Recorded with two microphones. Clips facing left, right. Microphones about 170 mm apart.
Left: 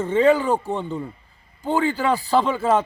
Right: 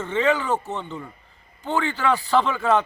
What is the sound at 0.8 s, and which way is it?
Speech, 30° left (ahead or behind).